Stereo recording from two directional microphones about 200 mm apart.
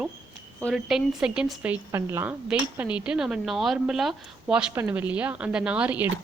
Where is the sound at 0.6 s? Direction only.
Centre (ahead or behind).